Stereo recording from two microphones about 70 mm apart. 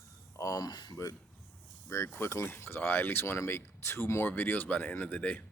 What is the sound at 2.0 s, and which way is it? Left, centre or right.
Speech, left.